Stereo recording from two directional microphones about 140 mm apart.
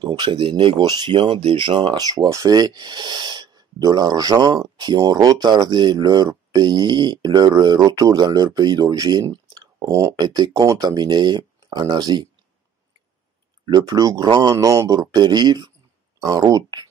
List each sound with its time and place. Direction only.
0.0 s speech: 35° right (ahead or behind)
13.7 s speech: 25° right (ahead or behind)